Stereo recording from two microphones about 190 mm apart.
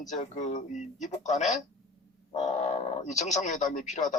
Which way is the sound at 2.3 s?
35° left (ahead or behind).